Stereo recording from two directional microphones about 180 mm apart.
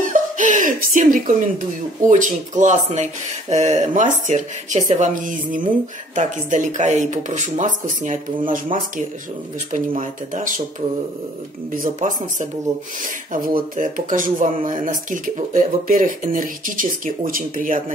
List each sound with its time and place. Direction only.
0.0 s speech: 45° right (ahead or behind)
9.7 s speech: 45° right (ahead or behind)
11.7 s speech: 45° right (ahead or behind)